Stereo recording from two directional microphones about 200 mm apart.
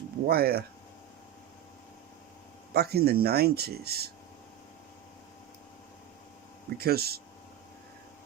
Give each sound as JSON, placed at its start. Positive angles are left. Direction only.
{"t": 0.3, "sound": "speech", "side_deg": -50}
{"t": 2.7, "sound": "speech", "side_deg": -50}
{"t": 6.7, "sound": "speech", "side_deg": -50}